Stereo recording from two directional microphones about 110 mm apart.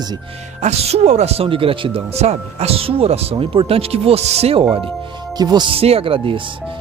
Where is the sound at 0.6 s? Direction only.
75° right (ahead or behind); by 2.2 s 55° right (ahead or behind).